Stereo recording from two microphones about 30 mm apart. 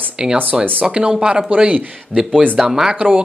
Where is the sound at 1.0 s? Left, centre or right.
Right.